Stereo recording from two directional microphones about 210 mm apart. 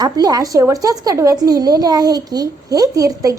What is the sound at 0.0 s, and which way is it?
A woman's voice, 20° right (ahead or behind).